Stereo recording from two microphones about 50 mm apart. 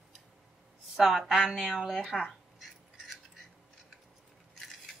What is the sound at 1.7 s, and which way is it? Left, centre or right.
Speech, centre.